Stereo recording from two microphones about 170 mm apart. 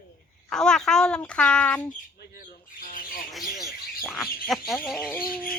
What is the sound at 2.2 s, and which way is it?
Squawk, 60° left (ahead or behind).